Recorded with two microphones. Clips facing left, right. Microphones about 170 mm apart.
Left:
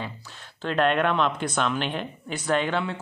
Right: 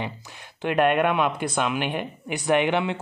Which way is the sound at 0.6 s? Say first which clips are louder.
Right 2 dB; 15° right (ahead or behind).